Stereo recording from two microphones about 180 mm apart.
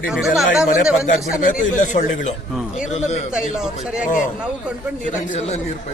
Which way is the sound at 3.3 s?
5° right (ahead or behind).